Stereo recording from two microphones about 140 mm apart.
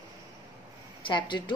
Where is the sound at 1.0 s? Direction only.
35° left (ahead or behind).